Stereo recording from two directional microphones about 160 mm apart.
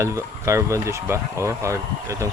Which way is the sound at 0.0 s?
20° right (ahead or behind).